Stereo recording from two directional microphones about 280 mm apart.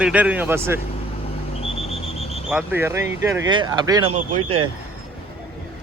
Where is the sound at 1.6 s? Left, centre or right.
Left.